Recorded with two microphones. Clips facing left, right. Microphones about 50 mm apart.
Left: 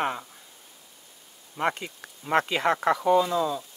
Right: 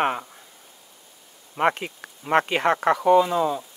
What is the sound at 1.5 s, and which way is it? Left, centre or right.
Speech, right.